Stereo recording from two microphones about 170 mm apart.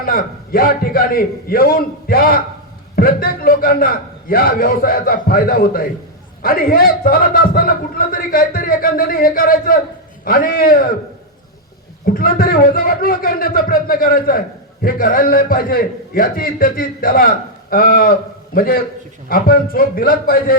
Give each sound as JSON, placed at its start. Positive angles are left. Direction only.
{"t": 0.0, "sound": "a man's voice", "side_deg": 60}
{"t": 12.0, "sound": "a man's voice", "side_deg": 60}